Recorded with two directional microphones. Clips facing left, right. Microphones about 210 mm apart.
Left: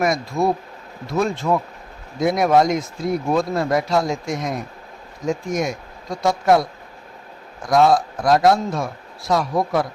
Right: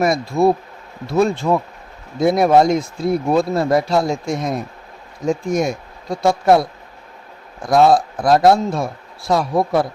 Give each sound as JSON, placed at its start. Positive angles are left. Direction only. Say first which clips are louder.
{"t": 0.0, "sound": "speech", "louder": "right 4 dB", "side_deg": -30}
{"t": 7.7, "sound": "speech", "louder": "right 3 dB", "side_deg": -30}